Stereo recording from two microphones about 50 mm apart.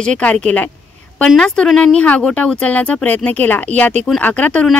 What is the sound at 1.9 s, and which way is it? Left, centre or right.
Speech, left.